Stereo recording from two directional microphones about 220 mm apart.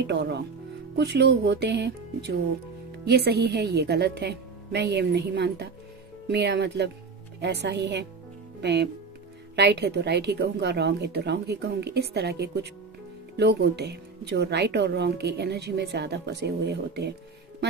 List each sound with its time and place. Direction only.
0.0 s speech: 50° right (ahead or behind)